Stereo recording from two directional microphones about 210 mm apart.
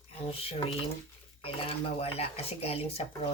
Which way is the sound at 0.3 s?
25° left (ahead or behind).